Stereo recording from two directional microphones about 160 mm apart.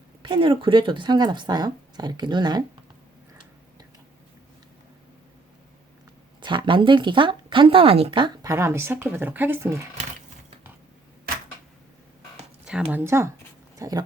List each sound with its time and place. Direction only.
0.2 s speech: 30° right (ahead or behind)
6.4 s speech: 30° right (ahead or behind)
12.9 s speech: 15° right (ahead or behind)